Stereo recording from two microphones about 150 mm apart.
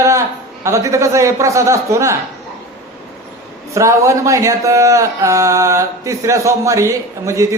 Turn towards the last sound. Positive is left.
turn(degrees=-20)  # may be behind; listen again after turning